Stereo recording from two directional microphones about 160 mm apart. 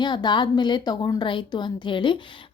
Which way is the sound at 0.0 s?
30° left (ahead or behind).